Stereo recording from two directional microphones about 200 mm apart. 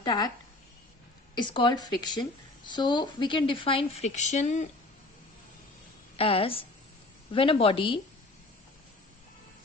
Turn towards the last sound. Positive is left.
turn(degrees=25)  # may be behind; listen again after turning